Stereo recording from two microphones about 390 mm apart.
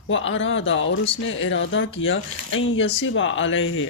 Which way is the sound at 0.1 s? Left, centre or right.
Left.